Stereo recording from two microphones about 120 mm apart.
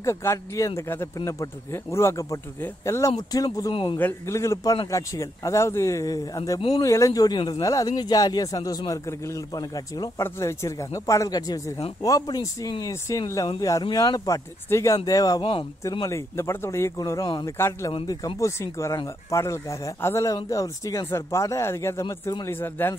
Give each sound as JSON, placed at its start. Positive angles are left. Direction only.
{"t": 0.0, "sound": "speech", "side_deg": 25}
{"t": 3.7, "sound": "a man's voice", "side_deg": 45}
{"t": 4.0, "sound": "speech", "side_deg": 25}
{"t": 10.1, "sound": "speech", "side_deg": 25}